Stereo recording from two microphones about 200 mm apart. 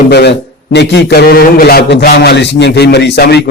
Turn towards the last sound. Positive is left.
turn(degrees=55)  # may be behind; listen again after turning